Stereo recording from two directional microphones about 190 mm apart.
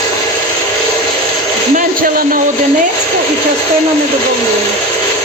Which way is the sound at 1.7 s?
50° right (ahead or behind).